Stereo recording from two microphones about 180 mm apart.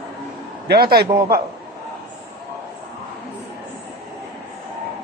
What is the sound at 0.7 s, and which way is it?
Speech, 60° right (ahead or behind).